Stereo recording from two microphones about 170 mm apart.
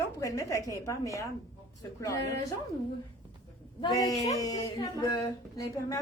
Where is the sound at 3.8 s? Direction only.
25° left (ahead or behind).